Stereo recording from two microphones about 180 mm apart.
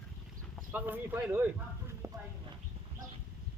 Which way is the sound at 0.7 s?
10° right (ahead or behind).